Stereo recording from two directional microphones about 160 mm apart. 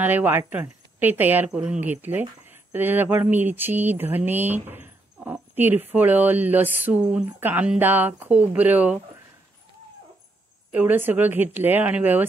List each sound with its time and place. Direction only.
0.0 s speech: 10° right (ahead or behind)
10.7 s speech: 10° right (ahead or behind)